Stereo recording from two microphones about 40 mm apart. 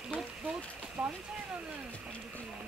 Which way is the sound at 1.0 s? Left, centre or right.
Right.